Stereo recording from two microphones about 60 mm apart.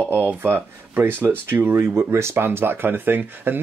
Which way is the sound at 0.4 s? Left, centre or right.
Right.